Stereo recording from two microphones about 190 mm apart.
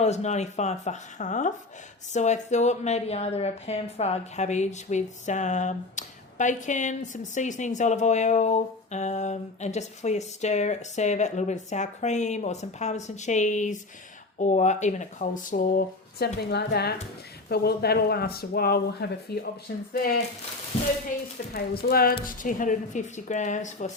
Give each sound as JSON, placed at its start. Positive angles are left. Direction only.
{"t": 0.0, "sound": "speech", "side_deg": 35}
{"t": 21.5, "sound": "speech", "side_deg": 55}